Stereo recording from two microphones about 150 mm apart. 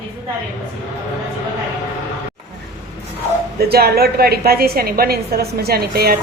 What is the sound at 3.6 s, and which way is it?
A woman's voice, 90° right.